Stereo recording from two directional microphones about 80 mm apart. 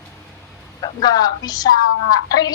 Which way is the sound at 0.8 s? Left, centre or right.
Left.